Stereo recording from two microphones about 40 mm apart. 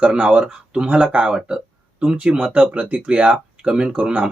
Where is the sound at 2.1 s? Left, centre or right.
Right.